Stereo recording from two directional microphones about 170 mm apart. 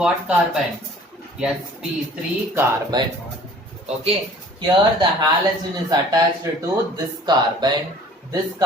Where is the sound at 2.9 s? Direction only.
25° right (ahead or behind).